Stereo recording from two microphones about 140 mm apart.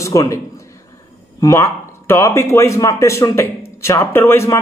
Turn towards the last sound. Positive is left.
turn(degrees=20)  # may be behind; listen again after turning